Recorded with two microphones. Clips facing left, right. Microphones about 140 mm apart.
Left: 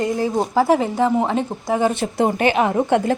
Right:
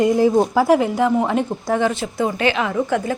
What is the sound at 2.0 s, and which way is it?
Speech, 60° left (ahead or behind).